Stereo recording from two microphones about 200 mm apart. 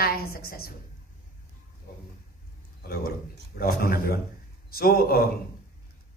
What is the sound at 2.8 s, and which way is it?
A man's voice, 50° left (ahead or behind).